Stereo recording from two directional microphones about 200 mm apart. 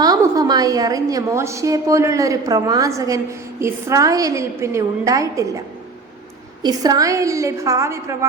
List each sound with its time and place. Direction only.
0.0 s a woman's voice: 20° right (ahead or behind)